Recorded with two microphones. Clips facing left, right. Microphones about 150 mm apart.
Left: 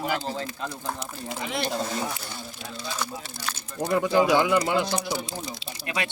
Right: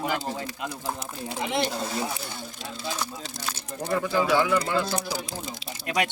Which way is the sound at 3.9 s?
20° left (ahead or behind).